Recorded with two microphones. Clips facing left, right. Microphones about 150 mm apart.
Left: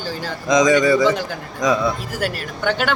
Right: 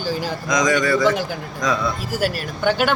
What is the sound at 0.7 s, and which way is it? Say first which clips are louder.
Speech: left 1 dB; 15° left (ahead or behind).